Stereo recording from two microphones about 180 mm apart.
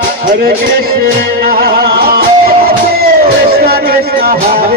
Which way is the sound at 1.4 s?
60° right (ahead or behind).